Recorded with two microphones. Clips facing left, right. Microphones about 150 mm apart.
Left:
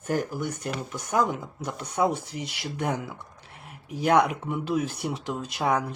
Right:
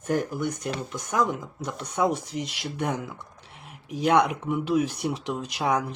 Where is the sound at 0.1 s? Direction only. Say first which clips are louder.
Right 1 dB; centre (ahead or behind).